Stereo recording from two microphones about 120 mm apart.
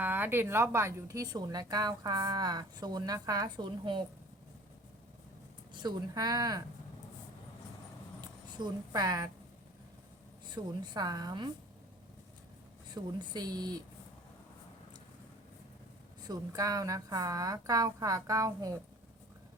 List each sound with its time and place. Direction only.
0.0 s speech: 15° right (ahead or behind); by 4.0 s 40° right (ahead or behind)
5.8 s speech: 35° right (ahead or behind)
8.5 s speech: 35° right (ahead or behind)
10.5 s speech: 35° right (ahead or behind)
12.9 s speech: 35° right (ahead or behind)
16.2 s speech: 30° right (ahead or behind)